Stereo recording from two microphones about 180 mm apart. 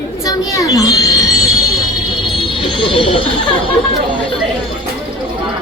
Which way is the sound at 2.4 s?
25° left (ahead or behind).